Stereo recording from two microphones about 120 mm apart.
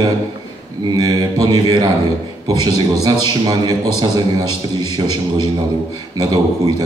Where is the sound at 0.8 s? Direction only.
35° right (ahead or behind).